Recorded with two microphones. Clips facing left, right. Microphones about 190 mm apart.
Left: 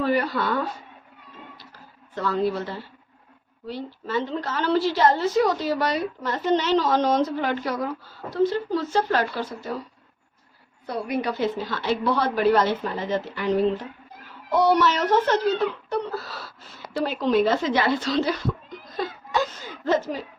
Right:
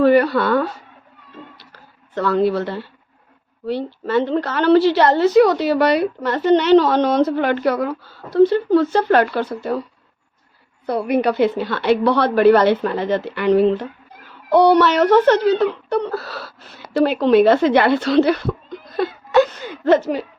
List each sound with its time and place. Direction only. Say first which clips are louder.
0.0 s a woman's voice: right 9 dB; 65° right (ahead or behind)
1.5 s a sound: even; 70° right (ahead or behind)
3.7 s a woman's voice: right 8 dB; 70° right (ahead or behind)
10.8 s a woman's voice: right 8 dB; 65° right (ahead or behind)